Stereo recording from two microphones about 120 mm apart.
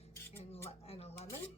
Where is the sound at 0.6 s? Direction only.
60° left (ahead or behind).